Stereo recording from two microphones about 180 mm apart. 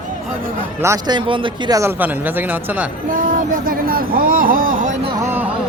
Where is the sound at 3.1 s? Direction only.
50° right (ahead or behind).